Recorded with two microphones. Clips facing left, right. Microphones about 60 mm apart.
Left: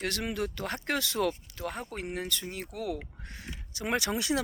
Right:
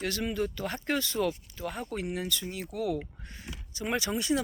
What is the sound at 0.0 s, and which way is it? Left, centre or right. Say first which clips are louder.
Speech: right 1 dB; left.